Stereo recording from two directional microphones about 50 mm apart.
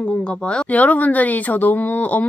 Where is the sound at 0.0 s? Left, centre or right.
Left.